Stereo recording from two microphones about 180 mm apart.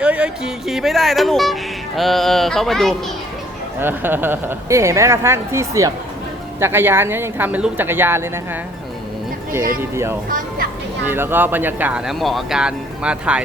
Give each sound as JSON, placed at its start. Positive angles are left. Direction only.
{"t": 0.0, "sound": "speech", "side_deg": -5}
{"t": 3.8, "sound": "speech", "side_deg": -10}
{"t": 9.9, "sound": "speech", "side_deg": -15}
{"t": 10.2, "sound": "speech", "side_deg": -50}
{"t": 11.0, "sound": "speech", "side_deg": -10}